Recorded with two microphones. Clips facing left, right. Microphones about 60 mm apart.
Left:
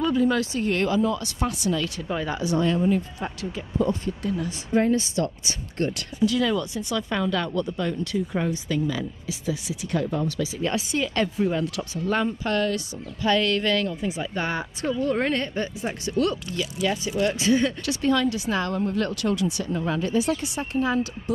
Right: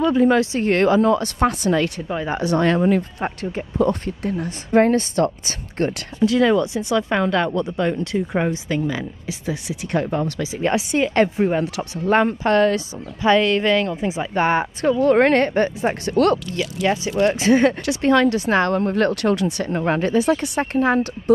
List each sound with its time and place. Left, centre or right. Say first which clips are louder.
0.0 s a woman's voice: right 6 dB; right
3.2 s a woman's voice: right 6 dB; right
6.6 s speech: right 8 dB; right
7.0 s speech: right 6 dB; right
9.5 s a woman's voice: right 3 dB; right
10.4 s a woman's voice: right 5 dB; right
12.7 s speech: right 5 dB; right
14.2 s a woman's voice: right 9 dB; right
17.2 s speech: right 6 dB; right
18.0 s a woman's voice: right 6 dB; right